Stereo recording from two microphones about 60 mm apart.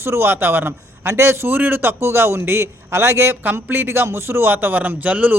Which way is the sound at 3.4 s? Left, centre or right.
Right.